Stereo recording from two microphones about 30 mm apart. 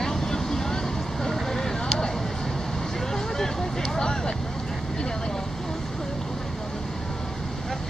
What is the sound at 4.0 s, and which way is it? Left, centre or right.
Vehicle, left.